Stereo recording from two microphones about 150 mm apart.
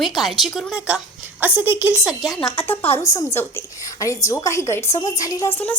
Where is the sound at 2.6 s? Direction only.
15° left (ahead or behind).